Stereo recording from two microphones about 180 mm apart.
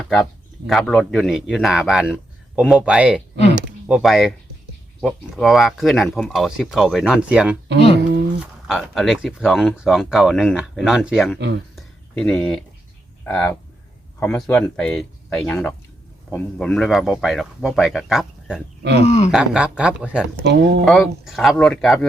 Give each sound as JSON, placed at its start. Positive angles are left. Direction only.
{"t": 0.0, "sound": "speech", "side_deg": 5}
{"t": 7.9, "sound": "a sound", "side_deg": -70}
{"t": 8.6, "sound": "speech", "side_deg": 0}
{"t": 11.3, "sound": "speech", "side_deg": -70}
{"t": 11.8, "sound": "a sound", "side_deg": 5}
{"t": 13.2, "sound": "speech", "side_deg": 10}
{"t": 18.8, "sound": "speech", "side_deg": -70}
{"t": 19.0, "sound": "speech", "side_deg": 35}
{"t": 19.3, "sound": "speech", "side_deg": -5}
{"t": 20.4, "sound": "speech", "side_deg": -70}
{"t": 20.8, "sound": "speech", "side_deg": 0}